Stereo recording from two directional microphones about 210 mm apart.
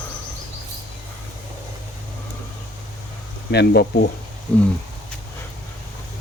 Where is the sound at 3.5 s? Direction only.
50° left (ahead or behind).